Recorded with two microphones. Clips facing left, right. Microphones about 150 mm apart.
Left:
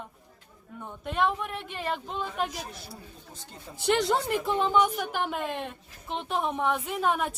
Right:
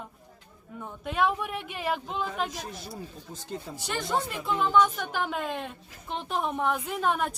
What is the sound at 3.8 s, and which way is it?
Speech, 70° left (ahead or behind).